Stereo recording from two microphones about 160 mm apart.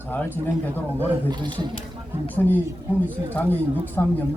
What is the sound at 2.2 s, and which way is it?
A man's voice, 10° left (ahead or behind).